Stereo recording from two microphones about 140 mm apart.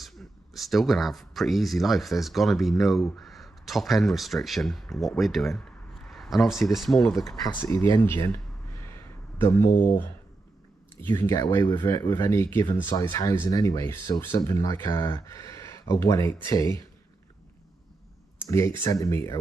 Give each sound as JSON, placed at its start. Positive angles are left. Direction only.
{"t": 0.0, "sound": "speech", "side_deg": 0}
{"t": 7.2, "sound": "speech", "side_deg": 25}
{"t": 8.8, "sound": "a sound", "side_deg": 20}
{"t": 9.8, "sound": "speech", "side_deg": 15}
{"t": 11.8, "sound": "speech", "side_deg": 35}
{"t": 12.1, "sound": "speech", "side_deg": 20}
{"t": 18.5, "sound": "speech", "side_deg": 20}